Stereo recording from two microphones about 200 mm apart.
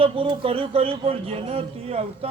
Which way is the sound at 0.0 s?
25° right (ahead or behind).